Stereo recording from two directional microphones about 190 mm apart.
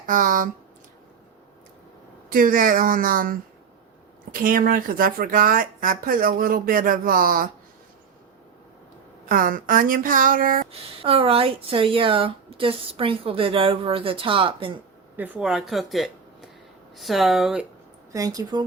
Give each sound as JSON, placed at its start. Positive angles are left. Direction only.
{"t": 0.0, "sound": "speech", "side_deg": -45}
{"t": 2.3, "sound": "speech", "side_deg": -45}
{"t": 9.3, "sound": "speech", "side_deg": -45}
{"t": 10.7, "sound": "speech", "side_deg": -30}
{"t": 15.1, "sound": "speech", "side_deg": -5}
{"t": 18.1, "sound": "speech", "side_deg": -20}